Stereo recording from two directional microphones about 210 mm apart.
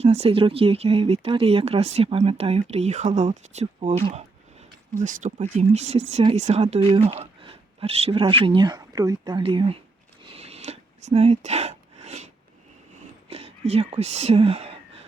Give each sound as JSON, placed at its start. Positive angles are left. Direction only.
{"t": 0.0, "sound": "speech", "side_deg": -30}
{"t": 10.2, "sound": "a sound", "side_deg": -30}
{"t": 13.3, "sound": "speech", "side_deg": -30}